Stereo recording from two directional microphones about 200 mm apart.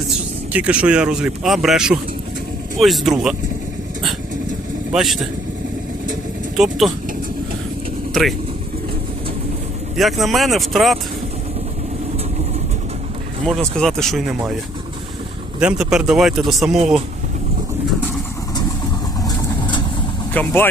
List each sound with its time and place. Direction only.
0.5 s speech: 5° right (ahead or behind)
4.9 s speech: centre (ahead or behind)
6.6 s speech: centre (ahead or behind)
8.1 s speech: centre (ahead or behind)
10.0 s speech: centre (ahead or behind)
13.4 s speech: 5° left (ahead or behind)
15.6 s speech: 5° right (ahead or behind)
19.2 s vehicle: 20° left (ahead or behind)
20.3 s speech: 10° left (ahead or behind)